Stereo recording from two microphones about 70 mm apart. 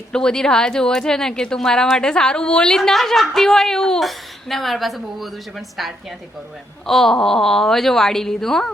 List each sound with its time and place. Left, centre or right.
0.1 s a woman's voice: centre